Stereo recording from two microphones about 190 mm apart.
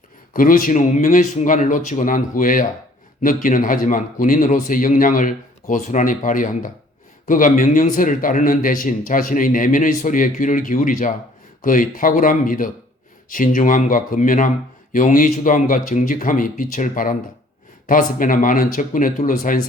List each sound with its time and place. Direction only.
0.3 s a man's voice: 45° left (ahead or behind)